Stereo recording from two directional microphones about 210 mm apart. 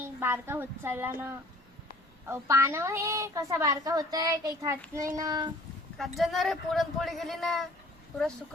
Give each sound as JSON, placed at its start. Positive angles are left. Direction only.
{"t": 0.0, "sound": "a woman's voice", "side_deg": -10}
{"t": 6.0, "sound": "speech", "side_deg": 0}